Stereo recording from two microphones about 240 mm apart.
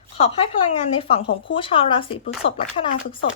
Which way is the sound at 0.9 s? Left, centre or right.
Left.